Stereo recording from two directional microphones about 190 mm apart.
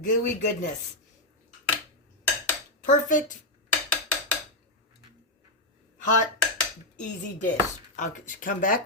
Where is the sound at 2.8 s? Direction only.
45° left (ahead or behind).